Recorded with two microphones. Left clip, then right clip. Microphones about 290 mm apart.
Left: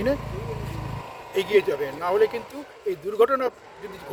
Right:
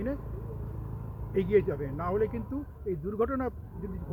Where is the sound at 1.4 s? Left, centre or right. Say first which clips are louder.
Left 6 dB; centre.